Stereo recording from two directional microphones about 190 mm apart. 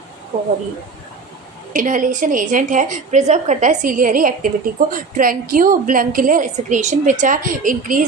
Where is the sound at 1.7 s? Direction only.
45° right (ahead or behind).